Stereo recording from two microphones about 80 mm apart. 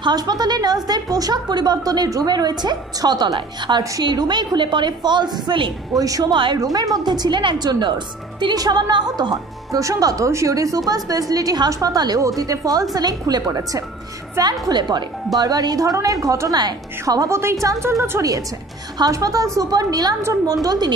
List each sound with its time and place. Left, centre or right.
0.0 s a woman's voice: right
3.3 s a woman's voice: right
5.9 s speech: right
6.3 s a woman's voice: right
6.6 s a woman's voice: right
8.5 s speech: right
14.7 s a woman's voice: right
15.3 s speech: right
17.3 s a woman's voice: right
18.9 s a woman's voice: right